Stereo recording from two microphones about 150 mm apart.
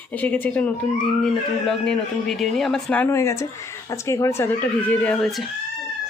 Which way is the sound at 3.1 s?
20° left (ahead or behind).